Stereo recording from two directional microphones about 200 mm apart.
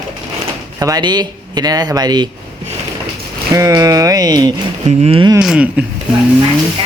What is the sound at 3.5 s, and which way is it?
Speech, 15° right (ahead or behind).